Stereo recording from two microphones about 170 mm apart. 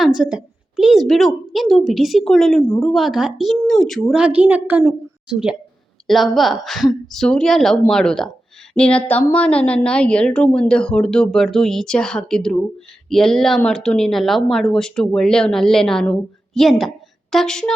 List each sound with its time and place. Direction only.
0.0 s a woman's voice: 5° right (ahead or behind)